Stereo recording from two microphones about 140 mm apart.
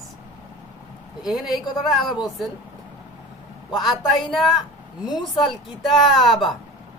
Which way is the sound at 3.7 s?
Centre (ahead or behind).